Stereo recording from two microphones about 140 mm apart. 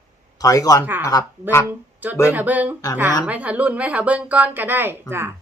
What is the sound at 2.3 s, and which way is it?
Speech, 10° right (ahead or behind).